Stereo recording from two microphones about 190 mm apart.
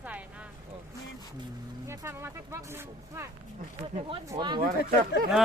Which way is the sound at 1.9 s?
15° right (ahead or behind).